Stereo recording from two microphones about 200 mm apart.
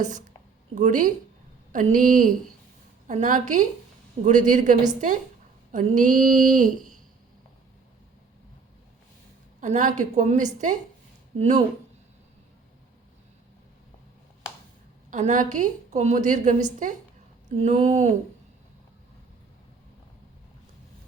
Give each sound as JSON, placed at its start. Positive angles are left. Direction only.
{"t": 0.0, "sound": "speech", "side_deg": -35}
{"t": 9.6, "sound": "speech", "side_deg": -40}
{"t": 15.1, "sound": "speech", "side_deg": -40}